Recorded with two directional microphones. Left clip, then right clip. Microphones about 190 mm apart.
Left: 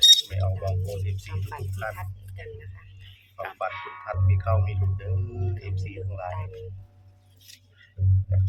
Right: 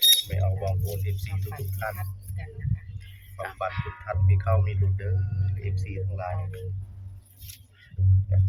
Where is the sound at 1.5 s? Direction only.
25° left (ahead or behind).